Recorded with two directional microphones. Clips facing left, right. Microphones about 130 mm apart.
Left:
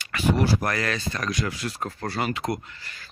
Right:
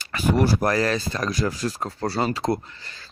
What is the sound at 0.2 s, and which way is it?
Speech, 45° right (ahead or behind).